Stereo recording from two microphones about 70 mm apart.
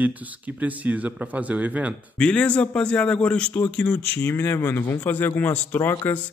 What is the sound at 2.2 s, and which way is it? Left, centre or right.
A man's voice, centre.